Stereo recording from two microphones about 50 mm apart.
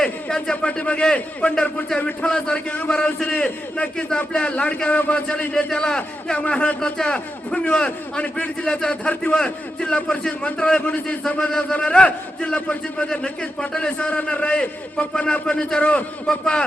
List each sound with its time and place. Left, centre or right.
0.0 s a sound: centre
0.6 s a man's voice: left
3.2 s a man's voice: left
10.8 s a man's voice: left
11.3 s a man's voice: centre